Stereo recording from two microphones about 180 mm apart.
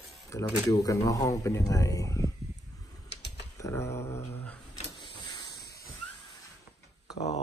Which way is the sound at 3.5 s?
15° left (ahead or behind).